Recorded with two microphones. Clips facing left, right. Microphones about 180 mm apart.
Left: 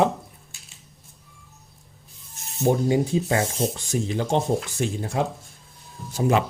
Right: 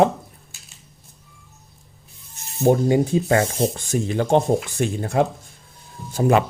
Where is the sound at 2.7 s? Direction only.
55° right (ahead or behind).